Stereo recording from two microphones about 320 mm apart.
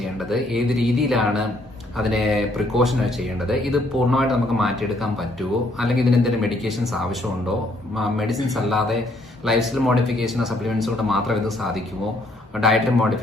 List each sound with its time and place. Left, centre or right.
0.0 s speech: centre